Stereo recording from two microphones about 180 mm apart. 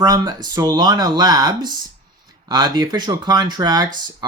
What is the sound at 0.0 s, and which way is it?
Speech, 20° right (ahead or behind).